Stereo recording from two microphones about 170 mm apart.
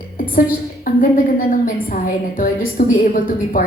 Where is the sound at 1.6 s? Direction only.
55° left (ahead or behind).